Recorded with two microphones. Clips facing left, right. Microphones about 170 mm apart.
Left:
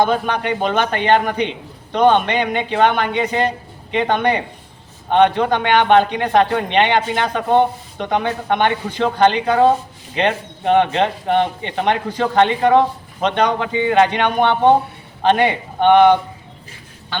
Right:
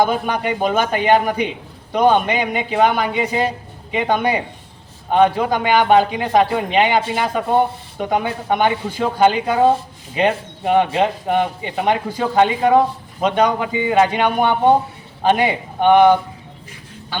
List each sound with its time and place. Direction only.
0.0 s speech: 10° right (ahead or behind)